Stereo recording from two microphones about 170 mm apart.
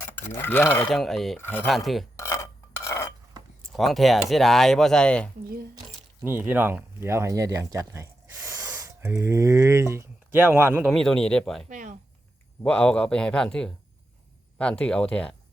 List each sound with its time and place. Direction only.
0.2 s cutlery: 10° left (ahead or behind)
1.4 s cutlery: 10° left (ahead or behind)
1.6 s speech: centre (ahead or behind)
2.1 s a sound: 15° left (ahead or behind)
3.3 s a sound: 25° right (ahead or behind)
3.7 s speech: centre (ahead or behind)
6.2 s speech: 10° right (ahead or behind)
10.8 s speech: 5° left (ahead or behind)
11.7 s a sound: 50° right (ahead or behind)
12.6 s speech: 5° left (ahead or behind)
14.6 s cutlery: 5° left (ahead or behind)